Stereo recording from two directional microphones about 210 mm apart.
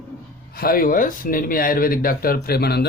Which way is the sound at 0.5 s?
45° left (ahead or behind).